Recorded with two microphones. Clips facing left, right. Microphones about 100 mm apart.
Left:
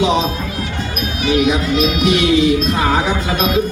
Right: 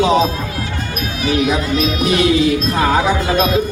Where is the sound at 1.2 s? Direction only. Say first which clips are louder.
Left 1 dB; 35° right (ahead or behind).